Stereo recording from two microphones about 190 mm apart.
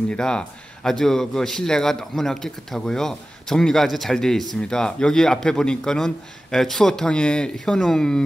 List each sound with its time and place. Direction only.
0.1 s speech: 5° left (ahead or behind)